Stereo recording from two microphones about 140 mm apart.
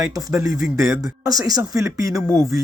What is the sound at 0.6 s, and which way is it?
Speech, 5° right (ahead or behind).